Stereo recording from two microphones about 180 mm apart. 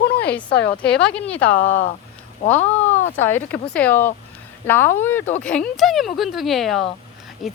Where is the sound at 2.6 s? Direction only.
40° left (ahead or behind).